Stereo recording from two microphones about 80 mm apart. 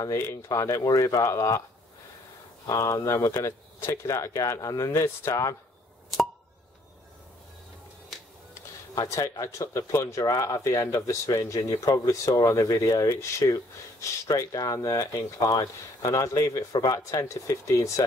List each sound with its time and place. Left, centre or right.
0.0 s speech: left
2.6 s speech: left
9.1 s speech: left
13.1 s speech: left